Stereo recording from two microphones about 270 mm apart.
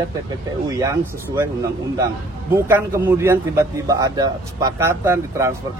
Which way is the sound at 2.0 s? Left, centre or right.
Centre.